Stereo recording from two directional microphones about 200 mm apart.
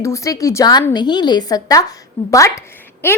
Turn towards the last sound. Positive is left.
turn(degrees=10)  # may be behind; listen again after turning